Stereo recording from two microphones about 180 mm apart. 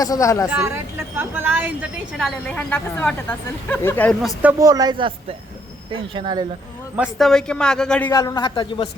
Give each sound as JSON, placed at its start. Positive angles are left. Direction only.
{"t": 0.0, "sound": "speech", "side_deg": 20}
{"t": 0.4, "sound": "speech", "side_deg": -10}
{"t": 2.1, "sound": "speech", "side_deg": 5}
{"t": 4.6, "sound": "speech", "side_deg": -20}
{"t": 6.9, "sound": "a man's voice", "side_deg": 0}
{"t": 8.1, "sound": "speech", "side_deg": 20}